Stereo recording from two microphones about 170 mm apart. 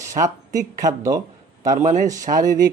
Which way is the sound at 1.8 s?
45° right (ahead or behind).